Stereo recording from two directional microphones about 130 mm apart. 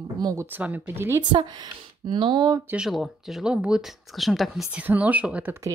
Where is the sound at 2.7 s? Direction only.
5° right (ahead or behind).